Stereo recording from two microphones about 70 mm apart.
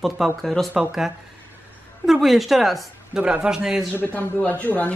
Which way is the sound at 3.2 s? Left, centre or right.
Centre.